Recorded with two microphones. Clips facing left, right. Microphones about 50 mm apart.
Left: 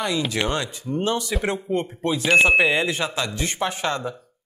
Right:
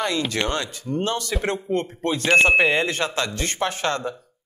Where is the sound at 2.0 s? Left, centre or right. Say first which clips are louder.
Even; centre.